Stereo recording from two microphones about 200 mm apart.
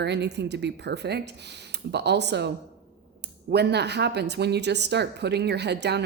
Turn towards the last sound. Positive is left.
turn(degrees=-55)  # may be behind; listen again after turning